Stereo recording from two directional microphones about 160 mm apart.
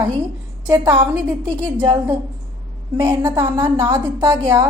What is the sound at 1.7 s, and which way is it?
Speech, 30° right (ahead or behind).